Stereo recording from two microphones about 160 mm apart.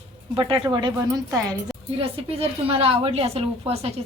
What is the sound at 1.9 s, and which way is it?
A woman's voice, 35° right (ahead or behind).